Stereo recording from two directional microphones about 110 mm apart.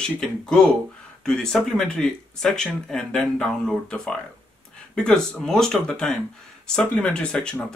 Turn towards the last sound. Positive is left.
turn(degrees=10)  # may be behind; listen again after turning